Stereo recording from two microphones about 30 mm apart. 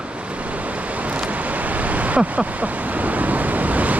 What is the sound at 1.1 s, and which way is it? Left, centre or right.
Waves, right.